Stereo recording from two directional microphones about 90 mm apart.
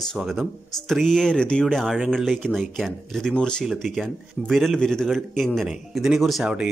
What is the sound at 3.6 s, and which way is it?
Speech, centre (ahead or behind).